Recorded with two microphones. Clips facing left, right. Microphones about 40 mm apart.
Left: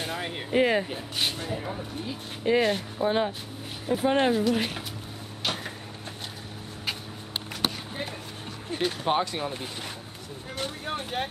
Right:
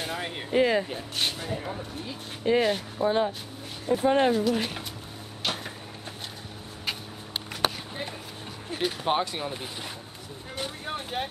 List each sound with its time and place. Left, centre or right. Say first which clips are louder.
0.0 s speech: even; centre
0.6 s speech: even; centre
0.8 s speech: even; centre
3.1 s speech: right 1 dB; centre
5.4 s a sound: even; centre
8.6 s speech: left 1 dB; centre
10.9 s speech: left 1 dB; centre